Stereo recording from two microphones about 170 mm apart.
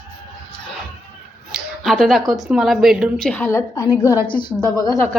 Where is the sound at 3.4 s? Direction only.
15° left (ahead or behind).